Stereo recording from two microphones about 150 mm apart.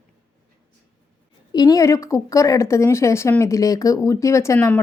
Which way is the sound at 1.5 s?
25° left (ahead or behind).